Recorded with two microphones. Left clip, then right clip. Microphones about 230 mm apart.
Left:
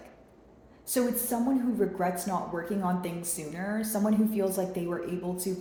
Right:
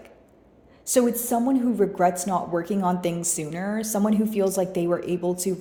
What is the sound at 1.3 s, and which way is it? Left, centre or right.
A woman's voice, right.